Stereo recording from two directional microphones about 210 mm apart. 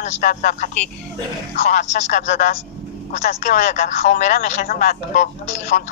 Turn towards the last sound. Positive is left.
turn(degrees=35)  # may be behind; listen again after turning